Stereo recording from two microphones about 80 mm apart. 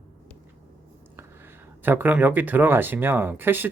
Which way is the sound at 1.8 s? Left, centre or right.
Right.